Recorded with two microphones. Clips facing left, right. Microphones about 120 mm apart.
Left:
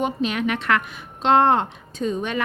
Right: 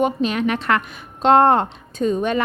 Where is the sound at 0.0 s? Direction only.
40° right (ahead or behind).